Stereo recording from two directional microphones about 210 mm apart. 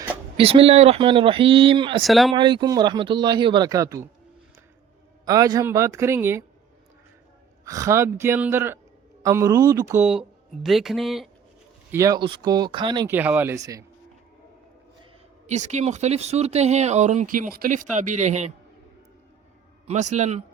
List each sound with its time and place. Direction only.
0.3 s speech: 25° right (ahead or behind)
2.0 s speech: centre (ahead or behind)
2.3 s speech: 20° right (ahead or behind)
5.2 s speech: 15° right (ahead or behind)
7.6 s speech: 15° right (ahead or behind)
11.9 s speech: 15° right (ahead or behind)
13.1 s speech: 10° right (ahead or behind)
15.4 s speech: 35° right (ahead or behind)
19.9 s speech: 35° right (ahead or behind)